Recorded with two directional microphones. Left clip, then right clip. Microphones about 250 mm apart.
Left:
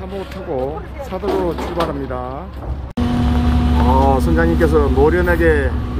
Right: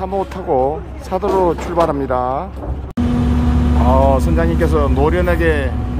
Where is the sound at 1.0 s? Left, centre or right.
Centre.